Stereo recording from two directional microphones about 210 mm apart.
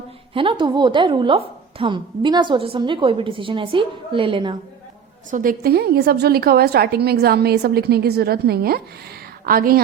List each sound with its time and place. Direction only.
0.3 s a woman's voice: 25° right (ahead or behind)
5.3 s a woman's voice: 40° right (ahead or behind)